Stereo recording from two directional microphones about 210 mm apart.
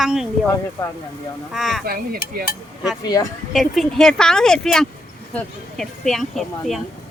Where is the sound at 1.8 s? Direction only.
45° right (ahead or behind).